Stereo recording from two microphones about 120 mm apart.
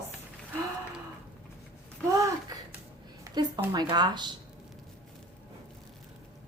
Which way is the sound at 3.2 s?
35° right (ahead or behind).